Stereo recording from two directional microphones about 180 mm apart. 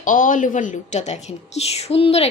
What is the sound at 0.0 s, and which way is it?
A woman's voice, 50° left (ahead or behind).